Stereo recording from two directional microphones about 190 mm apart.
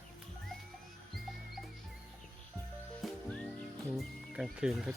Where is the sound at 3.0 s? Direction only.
5° left (ahead or behind).